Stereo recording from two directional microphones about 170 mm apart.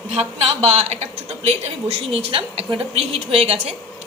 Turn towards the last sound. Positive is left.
turn(degrees=-35)  # may be behind; listen again after turning